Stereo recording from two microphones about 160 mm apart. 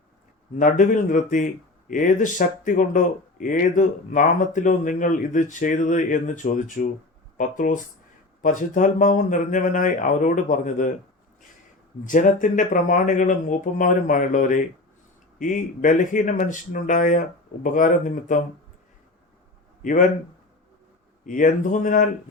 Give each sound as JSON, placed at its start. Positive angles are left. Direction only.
{"t": 0.6, "sound": "speech", "side_deg": 50}
{"t": 12.0, "sound": "speech", "side_deg": 55}
{"t": 19.8, "sound": "a man's voice", "side_deg": 55}
{"t": 21.2, "sound": "speech", "side_deg": 55}